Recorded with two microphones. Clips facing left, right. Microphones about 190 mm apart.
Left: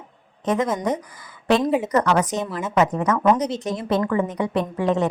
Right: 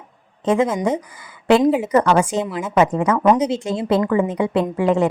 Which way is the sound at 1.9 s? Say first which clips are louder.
Right 4 dB; 25° right (ahead or behind).